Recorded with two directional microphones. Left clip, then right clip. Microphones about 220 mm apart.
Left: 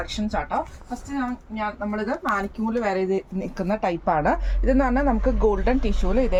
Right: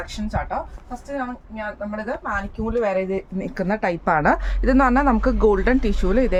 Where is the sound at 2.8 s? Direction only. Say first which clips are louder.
Right 1 dB; 20° right (ahead or behind).